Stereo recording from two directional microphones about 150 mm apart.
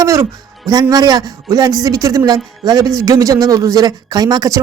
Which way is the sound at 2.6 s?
25° right (ahead or behind).